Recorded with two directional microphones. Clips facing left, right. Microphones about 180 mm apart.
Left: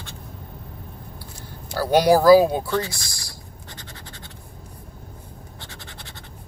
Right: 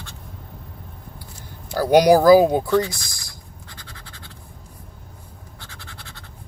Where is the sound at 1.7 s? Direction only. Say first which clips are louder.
Right 3 dB; 15° right (ahead or behind).